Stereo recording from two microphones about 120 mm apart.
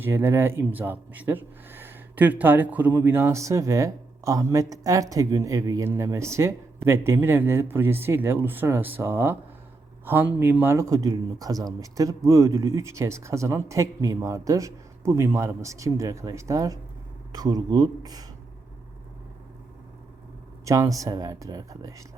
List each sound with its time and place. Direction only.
0.0 s speech: 20° right (ahead or behind)
20.7 s speech: 25° right (ahead or behind)